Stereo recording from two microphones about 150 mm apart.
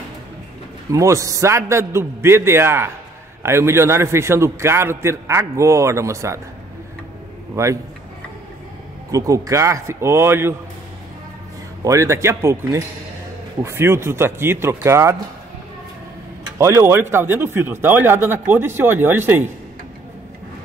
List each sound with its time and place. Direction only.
0.9 s a man's voice: 20° right (ahead or behind)
7.5 s a man's voice: 20° right (ahead or behind)
9.1 s a man's voice: 20° right (ahead or behind)
11.8 s a man's voice: 20° right (ahead or behind)
16.5 s speech: 20° right (ahead or behind)